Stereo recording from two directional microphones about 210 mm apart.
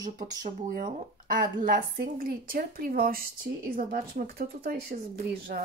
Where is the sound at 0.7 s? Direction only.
40° right (ahead or behind).